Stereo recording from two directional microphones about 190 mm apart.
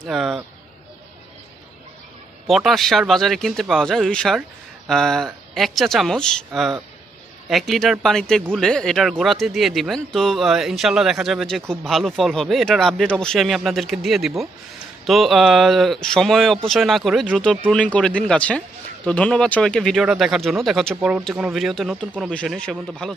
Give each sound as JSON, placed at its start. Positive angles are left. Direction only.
{"t": 0.0, "sound": "speech", "side_deg": 0}
{"t": 2.4, "sound": "speech", "side_deg": 0}